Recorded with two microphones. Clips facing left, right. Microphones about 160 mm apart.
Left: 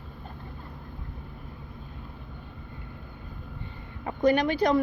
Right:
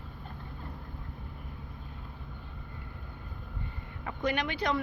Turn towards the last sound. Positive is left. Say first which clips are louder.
# left 8 dB
turn(degrees=40)  # may be behind; listen again after turning